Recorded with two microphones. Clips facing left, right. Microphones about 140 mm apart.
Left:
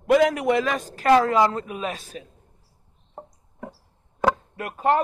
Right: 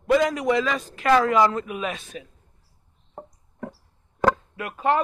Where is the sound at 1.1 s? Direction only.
30° left (ahead or behind).